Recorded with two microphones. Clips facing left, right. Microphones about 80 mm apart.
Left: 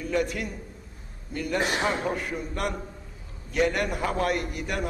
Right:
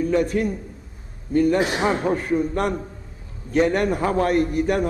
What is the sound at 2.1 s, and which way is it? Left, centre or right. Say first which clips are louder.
A man's voice: right 10 dB; right.